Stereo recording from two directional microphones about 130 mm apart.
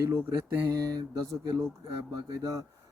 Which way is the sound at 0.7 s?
25° right (ahead or behind).